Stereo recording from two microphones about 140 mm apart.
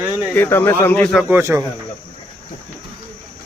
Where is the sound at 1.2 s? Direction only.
15° right (ahead or behind).